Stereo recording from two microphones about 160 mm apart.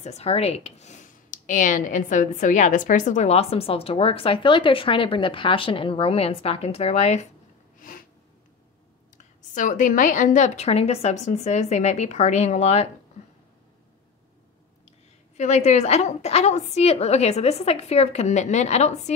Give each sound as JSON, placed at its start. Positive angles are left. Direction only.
{"t": 0.0, "sound": "speech", "side_deg": 40}
{"t": 9.2, "sound": "a woman's voice", "side_deg": 50}
{"t": 15.3, "sound": "a woman's voice", "side_deg": 45}